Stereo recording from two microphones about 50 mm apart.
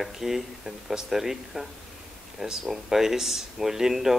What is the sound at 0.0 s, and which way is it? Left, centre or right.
Speech, centre.